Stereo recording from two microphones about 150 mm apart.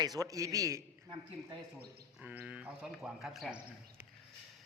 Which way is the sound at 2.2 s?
10° right (ahead or behind).